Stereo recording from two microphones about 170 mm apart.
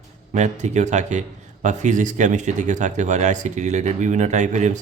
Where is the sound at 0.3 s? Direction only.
45° right (ahead or behind).